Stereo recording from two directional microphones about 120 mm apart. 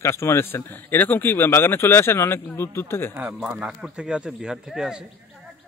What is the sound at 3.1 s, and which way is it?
Speech, 15° right (ahead or behind).